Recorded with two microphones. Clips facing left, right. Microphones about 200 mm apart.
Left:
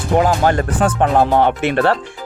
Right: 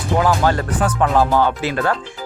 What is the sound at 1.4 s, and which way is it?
Speech, 65° left (ahead or behind).